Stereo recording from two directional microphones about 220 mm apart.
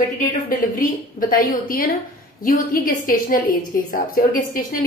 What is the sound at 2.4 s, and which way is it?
A woman's voice, 40° left (ahead or behind).